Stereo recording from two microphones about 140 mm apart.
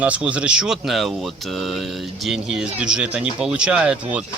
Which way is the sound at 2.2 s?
5° right (ahead or behind).